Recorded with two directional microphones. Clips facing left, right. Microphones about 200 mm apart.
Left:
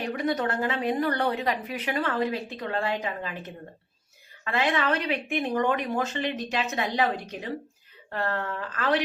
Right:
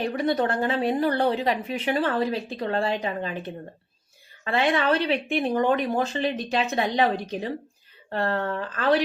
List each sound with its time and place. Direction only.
0.0 s a woman's voice: 30° right (ahead or behind)